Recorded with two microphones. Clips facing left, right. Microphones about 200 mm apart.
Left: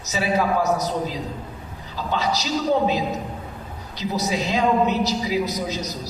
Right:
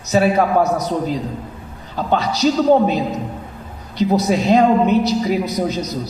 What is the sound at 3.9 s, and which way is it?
A woman's voice, 60° right (ahead or behind).